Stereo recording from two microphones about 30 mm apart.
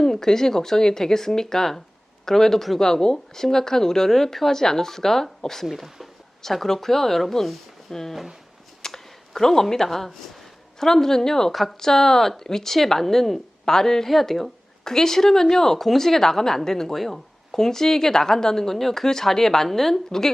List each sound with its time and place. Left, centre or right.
0.0 s speech: centre
6.4 s speech: centre
8.8 s a sound: centre
10.8 s speech: centre
11.5 s speech: centre
11.9 s speech: centre
14.3 s speech: centre
14.8 s speech: centre